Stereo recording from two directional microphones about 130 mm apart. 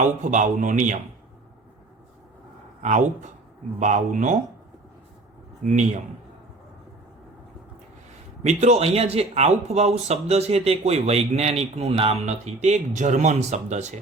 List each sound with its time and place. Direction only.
0.0 s a man's voice: 70° right (ahead or behind)
2.8 s a man's voice: 65° right (ahead or behind)
8.4 s speech: 60° right (ahead or behind)
12.6 s speech: 65° right (ahead or behind)